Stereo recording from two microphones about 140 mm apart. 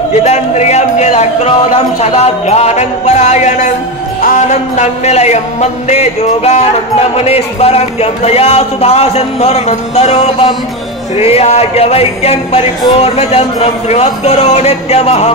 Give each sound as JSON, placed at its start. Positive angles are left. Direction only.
{"t": 0.2, "sound": "speech", "side_deg": 50}
{"t": 2.0, "sound": "music", "side_deg": 50}
{"t": 4.2, "sound": "speech", "side_deg": 60}